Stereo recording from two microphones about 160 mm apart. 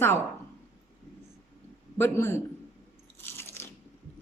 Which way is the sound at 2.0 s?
15° left (ahead or behind).